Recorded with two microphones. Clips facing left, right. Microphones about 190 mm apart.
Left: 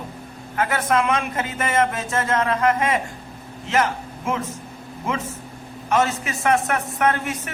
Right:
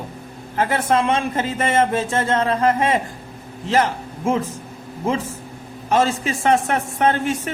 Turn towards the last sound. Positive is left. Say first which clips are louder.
# right 3 dB
turn(degrees=-30)  # may be behind; listen again after turning